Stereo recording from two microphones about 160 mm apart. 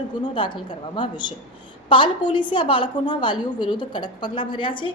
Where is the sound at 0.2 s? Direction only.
30° left (ahead or behind).